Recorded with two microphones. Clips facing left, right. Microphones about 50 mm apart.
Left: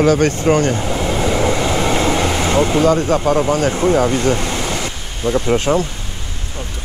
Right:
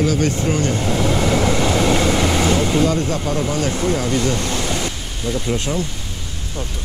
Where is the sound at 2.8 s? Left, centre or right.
Left.